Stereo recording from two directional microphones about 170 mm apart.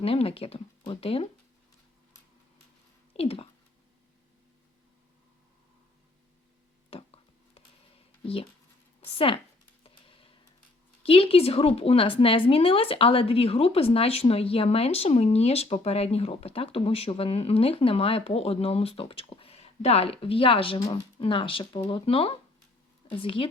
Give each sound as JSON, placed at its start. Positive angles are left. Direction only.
{"t": 0.0, "sound": "a woman's voice", "side_deg": 35}
{"t": 3.1, "sound": "speech", "side_deg": 35}
{"t": 6.9, "sound": "a sound", "side_deg": 35}
{"t": 9.1, "sound": "a woman's voice", "side_deg": 30}
{"t": 9.8, "sound": "a sound", "side_deg": 30}
{"t": 11.0, "sound": "a woman's voice", "side_deg": 35}
{"t": 20.7, "sound": "speech", "side_deg": 15}
{"t": 21.2, "sound": "a woman's voice", "side_deg": 30}